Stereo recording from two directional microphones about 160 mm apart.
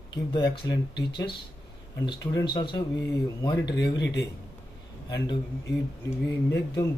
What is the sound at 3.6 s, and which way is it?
Speech, 90° left.